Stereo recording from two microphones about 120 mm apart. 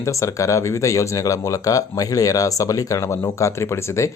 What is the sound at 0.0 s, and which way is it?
Speech, 25° left (ahead or behind).